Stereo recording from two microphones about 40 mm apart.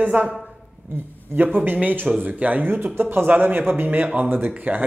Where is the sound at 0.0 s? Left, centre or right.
Right.